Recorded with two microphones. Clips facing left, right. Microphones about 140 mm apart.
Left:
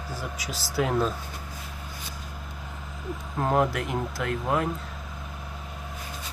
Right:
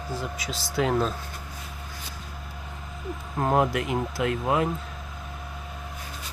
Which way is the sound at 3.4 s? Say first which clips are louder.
Right 1 dB; 10° right (ahead or behind).